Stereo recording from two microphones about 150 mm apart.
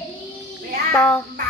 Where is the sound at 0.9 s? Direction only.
10° left (ahead or behind).